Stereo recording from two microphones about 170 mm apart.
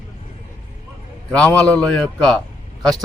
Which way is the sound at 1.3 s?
5° left (ahead or behind).